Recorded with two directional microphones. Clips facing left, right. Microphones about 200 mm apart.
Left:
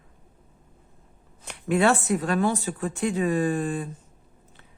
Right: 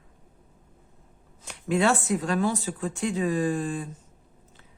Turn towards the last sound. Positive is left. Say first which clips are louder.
# left 2 dB
turn(degrees=60)  # may be behind; listen again after turning